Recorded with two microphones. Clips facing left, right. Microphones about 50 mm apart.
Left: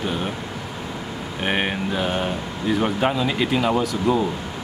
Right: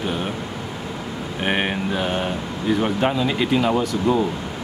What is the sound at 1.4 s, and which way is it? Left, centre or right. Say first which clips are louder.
Speech: right 1 dB; centre.